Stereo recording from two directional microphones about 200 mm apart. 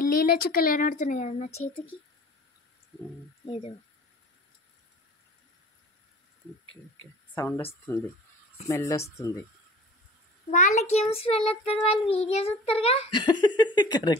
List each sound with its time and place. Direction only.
0.0 s speech: 45° left (ahead or behind)
3.4 s a child's voice: 25° left (ahead or behind)
7.3 s speech: 10° left (ahead or behind)
10.5 s a child's voice: 40° left (ahead or behind); by 14.1 s 20° left (ahead or behind)